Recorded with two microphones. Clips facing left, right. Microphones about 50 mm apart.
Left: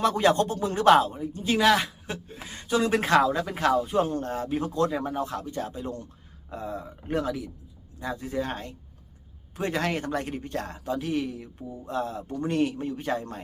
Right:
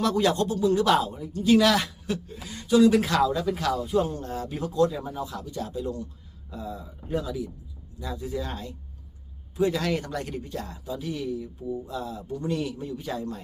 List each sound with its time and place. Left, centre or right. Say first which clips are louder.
0.0 s speech: left 1 dB; left
2.4 s speech: right 7 dB; left
4.4 s speech: right 4 dB; left
7.1 s a man's voice: left 1 dB; left
7.9 s speech: left 2 dB; left
10.5 s a man's voice: left 3 dB; left